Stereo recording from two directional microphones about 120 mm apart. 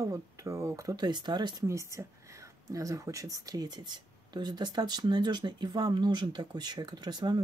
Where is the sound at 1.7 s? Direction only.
25° right (ahead or behind).